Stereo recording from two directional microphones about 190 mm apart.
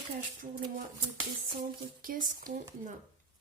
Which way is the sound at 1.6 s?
45° right (ahead or behind).